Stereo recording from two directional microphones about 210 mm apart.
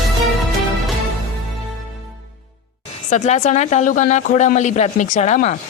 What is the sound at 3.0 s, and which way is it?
Speech, 35° left (ahead or behind).